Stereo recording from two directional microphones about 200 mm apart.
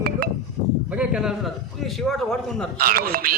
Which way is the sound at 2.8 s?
45° right (ahead or behind).